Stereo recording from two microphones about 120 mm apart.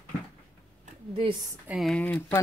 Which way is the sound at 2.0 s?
15° left (ahead or behind).